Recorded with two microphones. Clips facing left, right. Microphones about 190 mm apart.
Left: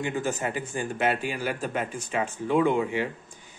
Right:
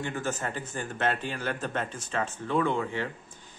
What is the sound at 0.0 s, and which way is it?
Speech, 15° left (ahead or behind).